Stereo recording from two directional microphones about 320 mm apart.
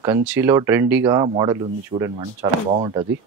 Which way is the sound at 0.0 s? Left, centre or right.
Centre.